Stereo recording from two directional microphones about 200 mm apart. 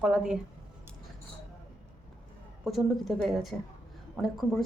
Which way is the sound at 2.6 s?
Centre (ahead or behind).